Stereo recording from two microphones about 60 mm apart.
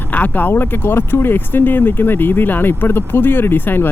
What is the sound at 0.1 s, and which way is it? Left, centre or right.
Speech, left.